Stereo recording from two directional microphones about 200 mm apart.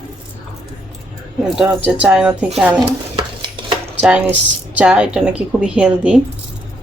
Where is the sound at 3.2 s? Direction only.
25° right (ahead or behind).